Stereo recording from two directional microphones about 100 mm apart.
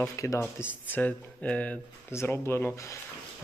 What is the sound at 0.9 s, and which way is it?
Speech, 15° left (ahead or behind).